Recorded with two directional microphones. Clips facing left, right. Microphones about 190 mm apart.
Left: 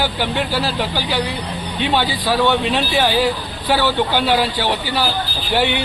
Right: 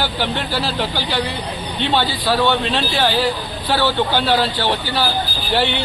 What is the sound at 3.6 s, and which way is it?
A man's voice, 15° left (ahead or behind).